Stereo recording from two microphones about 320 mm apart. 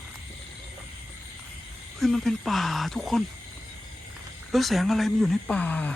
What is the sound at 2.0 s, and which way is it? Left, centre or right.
Speech, centre.